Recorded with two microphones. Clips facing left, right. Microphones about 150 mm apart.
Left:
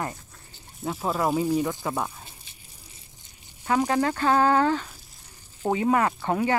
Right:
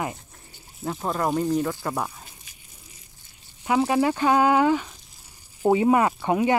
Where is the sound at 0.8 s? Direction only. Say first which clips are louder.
Even; 5° left (ahead or behind).